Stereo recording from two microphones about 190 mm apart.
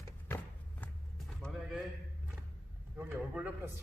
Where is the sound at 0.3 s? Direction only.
10° left (ahead or behind).